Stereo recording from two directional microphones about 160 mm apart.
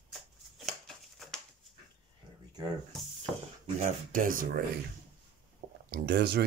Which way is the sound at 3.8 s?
55° right (ahead or behind).